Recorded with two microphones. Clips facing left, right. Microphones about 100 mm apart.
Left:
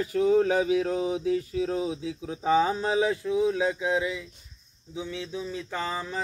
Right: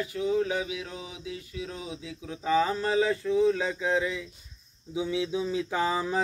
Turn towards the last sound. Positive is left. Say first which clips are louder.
# right 4 dB
turn(degrees=-10)  # may be behind; listen again after turning